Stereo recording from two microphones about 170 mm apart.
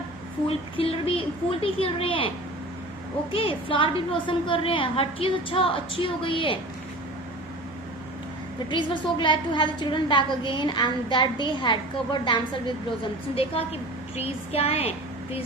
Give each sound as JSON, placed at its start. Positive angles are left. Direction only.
{"t": 0.4, "sound": "a woman's voice", "side_deg": 35}
{"t": 3.3, "sound": "a woman's voice", "side_deg": 30}
{"t": 8.7, "sound": "a woman's voice", "side_deg": 25}